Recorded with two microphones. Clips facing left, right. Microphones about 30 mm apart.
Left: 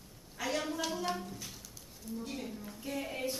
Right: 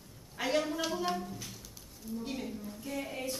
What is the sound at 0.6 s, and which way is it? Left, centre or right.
Speech, centre.